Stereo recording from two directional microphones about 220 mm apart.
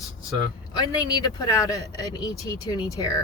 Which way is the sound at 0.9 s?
15° left (ahead or behind).